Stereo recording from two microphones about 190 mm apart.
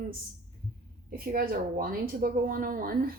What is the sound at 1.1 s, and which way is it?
A woman's voice, 50° right (ahead or behind).